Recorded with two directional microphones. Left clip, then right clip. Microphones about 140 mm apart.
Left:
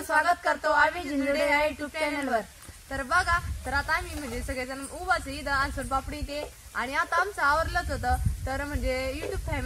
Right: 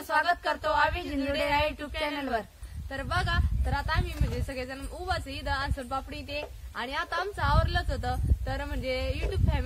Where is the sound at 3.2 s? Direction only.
55° right (ahead or behind).